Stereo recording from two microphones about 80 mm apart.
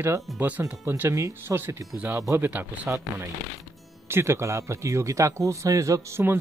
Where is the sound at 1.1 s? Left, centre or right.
Right.